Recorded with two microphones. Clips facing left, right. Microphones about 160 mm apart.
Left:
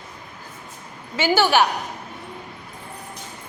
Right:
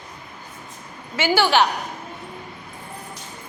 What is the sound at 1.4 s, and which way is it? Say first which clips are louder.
Speech: even; 15° left (ahead or behind).